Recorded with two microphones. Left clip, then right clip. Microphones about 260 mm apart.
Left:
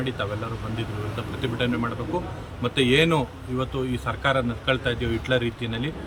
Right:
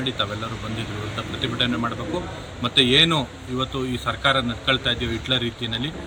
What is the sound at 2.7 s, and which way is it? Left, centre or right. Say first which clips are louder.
Speech: right 4 dB; left.